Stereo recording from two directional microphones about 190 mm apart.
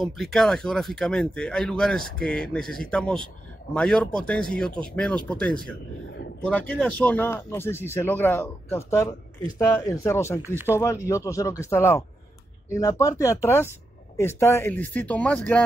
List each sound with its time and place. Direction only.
0.0 s speech: centre (ahead or behind)
10.4 s speech: 10° right (ahead or behind)
10.8 s speech: 15° left (ahead or behind)